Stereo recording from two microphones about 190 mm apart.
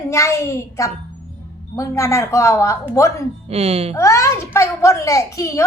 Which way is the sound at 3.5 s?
30° right (ahead or behind).